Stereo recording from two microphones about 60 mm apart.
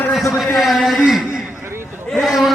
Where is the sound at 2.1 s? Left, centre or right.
Centre.